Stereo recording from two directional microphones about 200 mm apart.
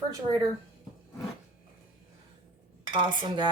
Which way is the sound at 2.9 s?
25° right (ahead or behind).